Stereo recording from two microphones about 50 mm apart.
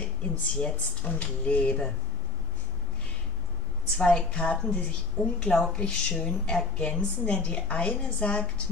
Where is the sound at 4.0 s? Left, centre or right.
Left.